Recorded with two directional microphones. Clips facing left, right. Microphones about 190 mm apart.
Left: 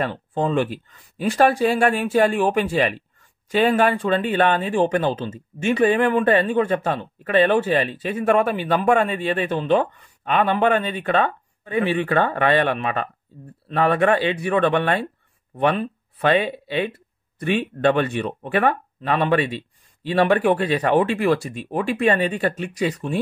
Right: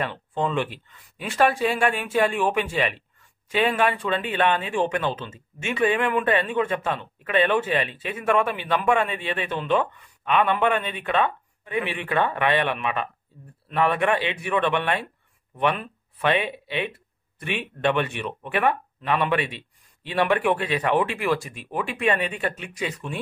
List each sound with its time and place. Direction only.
0.0 s speech: 35° left (ahead or behind)